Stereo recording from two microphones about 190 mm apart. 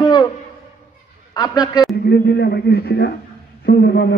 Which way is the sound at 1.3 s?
20° left (ahead or behind).